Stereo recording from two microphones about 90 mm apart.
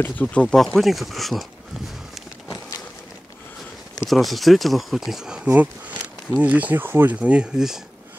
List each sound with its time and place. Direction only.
0.0 s speech: 15° left (ahead or behind)
2.1 s a sound: centre (ahead or behind)
4.1 s speech: centre (ahead or behind)